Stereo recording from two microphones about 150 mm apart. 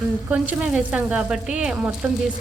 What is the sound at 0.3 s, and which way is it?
A woman's voice, 5° right (ahead or behind).